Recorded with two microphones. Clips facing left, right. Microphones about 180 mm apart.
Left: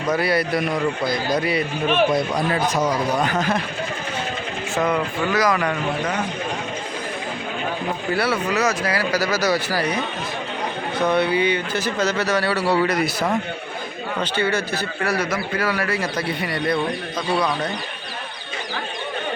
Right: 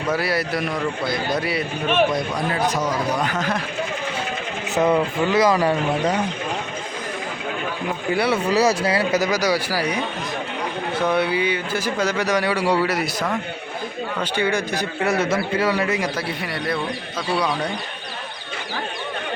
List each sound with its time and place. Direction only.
0.1 s a man's voice: centre (ahead or behind)
4.7 s a man's voice: 20° right (ahead or behind)
8.1 s speech: 15° right (ahead or behind)
8.4 s a man's voice: 30° right (ahead or behind); by 10.0 s 10° right (ahead or behind)
11.0 s speech: 10° right (ahead or behind)
14.2 s a man's voice: 15° right (ahead or behind)
16.1 s a man's voice: centre (ahead or behind)